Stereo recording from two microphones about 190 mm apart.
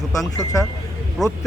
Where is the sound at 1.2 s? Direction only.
Centre (ahead or behind).